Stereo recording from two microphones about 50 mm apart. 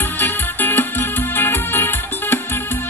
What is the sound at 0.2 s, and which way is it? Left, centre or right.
Music, left.